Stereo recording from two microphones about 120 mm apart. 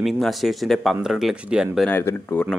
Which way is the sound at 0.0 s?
Centre (ahead or behind).